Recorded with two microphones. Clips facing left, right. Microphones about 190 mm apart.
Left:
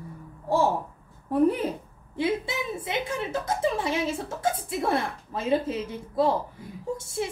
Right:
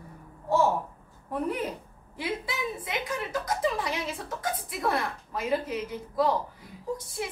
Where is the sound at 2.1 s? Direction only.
25° left (ahead or behind).